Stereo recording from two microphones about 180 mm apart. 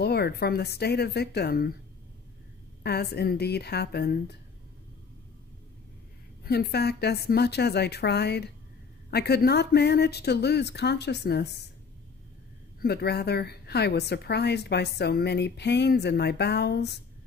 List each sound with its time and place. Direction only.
0.0 s a woman's voice: 65° left (ahead or behind)
2.8 s a woman's voice: 65° left (ahead or behind)
6.4 s a woman's voice: 60° left (ahead or behind)
12.8 s a woman's voice: 65° left (ahead or behind)